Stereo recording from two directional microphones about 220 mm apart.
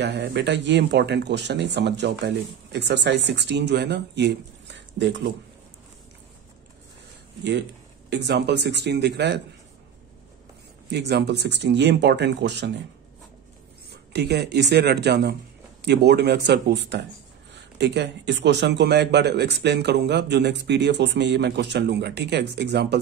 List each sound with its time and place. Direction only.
0.0 s speech: 50° right (ahead or behind)
8.1 s speech: 50° right (ahead or behind)
10.9 s speech: 50° right (ahead or behind)
13.8 s speech: 50° right (ahead or behind)